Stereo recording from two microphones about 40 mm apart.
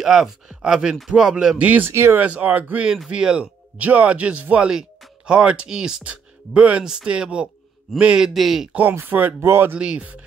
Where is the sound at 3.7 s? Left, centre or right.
Right.